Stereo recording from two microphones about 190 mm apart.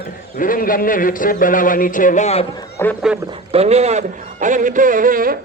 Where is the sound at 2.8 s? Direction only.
15° left (ahead or behind).